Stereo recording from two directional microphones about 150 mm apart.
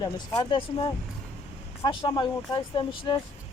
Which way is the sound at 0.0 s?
30° left (ahead or behind).